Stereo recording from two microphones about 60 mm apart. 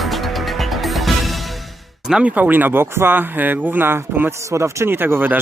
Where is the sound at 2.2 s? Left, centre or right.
Right.